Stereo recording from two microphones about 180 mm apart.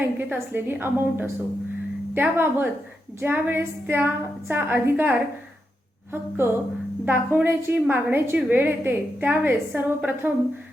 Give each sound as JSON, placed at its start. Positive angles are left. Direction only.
{"t": 0.0, "sound": "a woman's voice", "side_deg": -10}
{"t": 7.0, "sound": "a woman's voice", "side_deg": -10}